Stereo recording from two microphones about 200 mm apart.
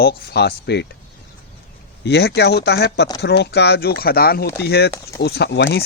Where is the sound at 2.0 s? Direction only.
55° left (ahead or behind).